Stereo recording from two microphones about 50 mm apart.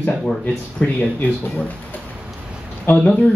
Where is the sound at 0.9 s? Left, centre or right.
Left.